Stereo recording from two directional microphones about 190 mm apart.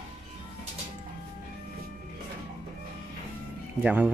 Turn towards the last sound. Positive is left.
turn(degrees=-5)  # may be behind; listen again after turning